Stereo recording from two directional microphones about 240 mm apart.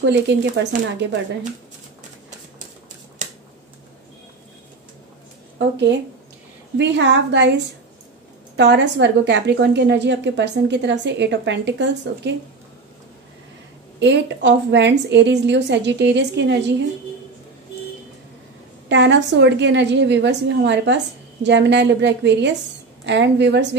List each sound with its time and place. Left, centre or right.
0.0 s a woman's voice: right
5.6 s a woman's voice: right
13.9 s a woman's voice: right
18.9 s a woman's voice: right